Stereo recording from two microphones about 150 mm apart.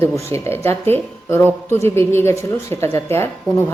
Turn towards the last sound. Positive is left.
turn(degrees=15)  # may be behind; listen again after turning